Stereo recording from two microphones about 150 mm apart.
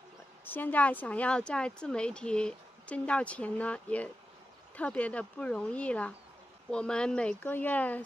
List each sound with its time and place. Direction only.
0.5 s speech: 10° left (ahead or behind)